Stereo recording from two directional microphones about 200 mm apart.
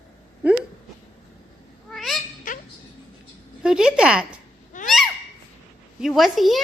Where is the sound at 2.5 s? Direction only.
40° left (ahead or behind).